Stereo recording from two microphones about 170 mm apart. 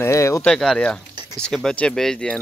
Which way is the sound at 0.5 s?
5° left (ahead or behind).